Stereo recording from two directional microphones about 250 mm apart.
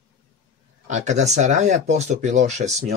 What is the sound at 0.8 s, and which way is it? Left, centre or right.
Speech, right.